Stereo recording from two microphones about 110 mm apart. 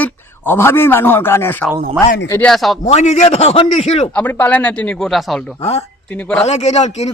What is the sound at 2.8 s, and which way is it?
A man's voice, 90° left.